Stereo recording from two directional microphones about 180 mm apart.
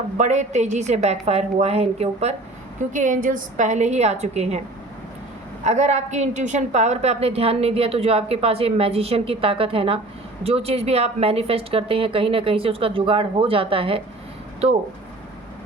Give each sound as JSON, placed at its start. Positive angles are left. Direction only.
{"t": 0.2, "sound": "a woman's voice", "side_deg": -40}
{"t": 5.6, "sound": "a woman's voice", "side_deg": -40}